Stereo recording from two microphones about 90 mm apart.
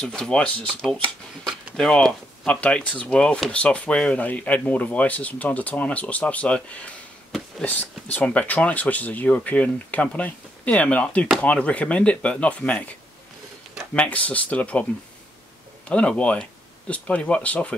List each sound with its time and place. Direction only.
0.0 s speech: 5° left (ahead or behind)
13.9 s speech: 15° left (ahead or behind)
15.9 s speech: 15° left (ahead or behind)